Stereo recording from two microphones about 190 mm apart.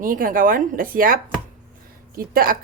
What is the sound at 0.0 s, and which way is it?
A woman's voice, 45° right (ahead or behind).